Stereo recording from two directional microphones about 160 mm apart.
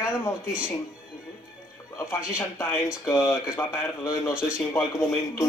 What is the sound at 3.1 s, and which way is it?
A man's voice, 20° left (ahead or behind).